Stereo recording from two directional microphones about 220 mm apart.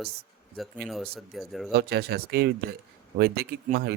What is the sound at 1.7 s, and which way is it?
Speech, 45° right (ahead or behind).